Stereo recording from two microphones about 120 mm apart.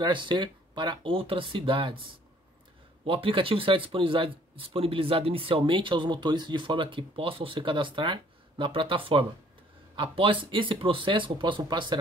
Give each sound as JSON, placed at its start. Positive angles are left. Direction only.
{"t": 0.0, "sound": "speech", "side_deg": -40}
{"t": 3.1, "sound": "speech", "side_deg": -45}